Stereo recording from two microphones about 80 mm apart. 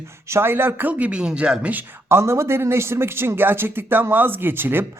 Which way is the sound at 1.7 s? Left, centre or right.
Right.